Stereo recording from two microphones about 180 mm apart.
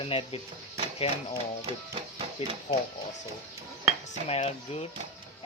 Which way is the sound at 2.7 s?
40° left (ahead or behind).